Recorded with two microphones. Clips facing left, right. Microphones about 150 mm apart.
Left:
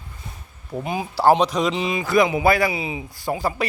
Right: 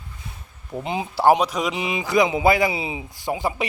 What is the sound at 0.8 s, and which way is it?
Speech, 25° right (ahead or behind).